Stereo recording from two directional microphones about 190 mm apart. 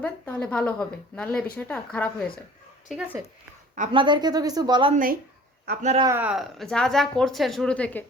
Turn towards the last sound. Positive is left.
turn(degrees=5)  # may be behind; listen again after turning